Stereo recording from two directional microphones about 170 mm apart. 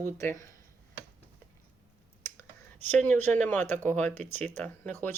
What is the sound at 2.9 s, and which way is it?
Speech, 10° left (ahead or behind).